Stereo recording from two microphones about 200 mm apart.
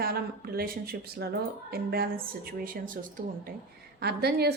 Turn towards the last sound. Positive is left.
turn(degrees=-55)  # may be behind; listen again after turning